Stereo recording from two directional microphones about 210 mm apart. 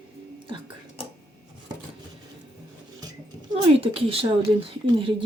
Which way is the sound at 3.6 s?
25° right (ahead or behind).